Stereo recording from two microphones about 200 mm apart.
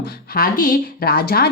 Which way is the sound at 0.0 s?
45° left (ahead or behind).